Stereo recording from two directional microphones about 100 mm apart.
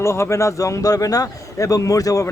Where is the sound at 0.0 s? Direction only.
30° left (ahead or behind).